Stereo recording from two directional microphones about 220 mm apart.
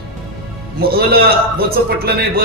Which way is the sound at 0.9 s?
45° right (ahead or behind).